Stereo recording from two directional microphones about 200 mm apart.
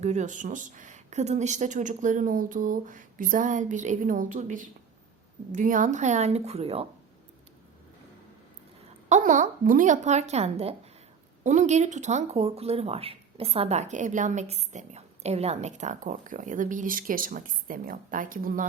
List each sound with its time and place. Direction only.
0.0 s speech: 35° right (ahead or behind)
9.0 s speech: 35° right (ahead or behind)